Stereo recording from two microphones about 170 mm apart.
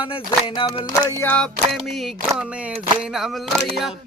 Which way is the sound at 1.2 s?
10° left (ahead or behind).